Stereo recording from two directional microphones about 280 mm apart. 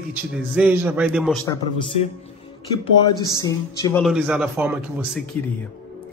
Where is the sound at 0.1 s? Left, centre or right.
Centre.